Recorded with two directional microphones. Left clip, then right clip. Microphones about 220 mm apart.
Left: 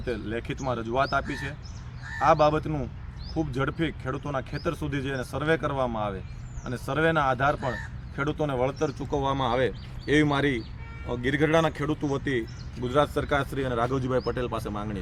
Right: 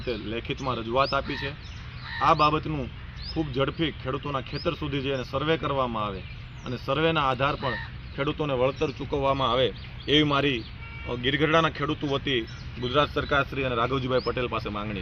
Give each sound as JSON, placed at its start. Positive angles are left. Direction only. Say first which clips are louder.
{"t": 0.0, "sound": "speech", "louder": "even", "side_deg": 15}
{"t": 13.3, "sound": "speech", "louder": "right 2 dB", "side_deg": 10}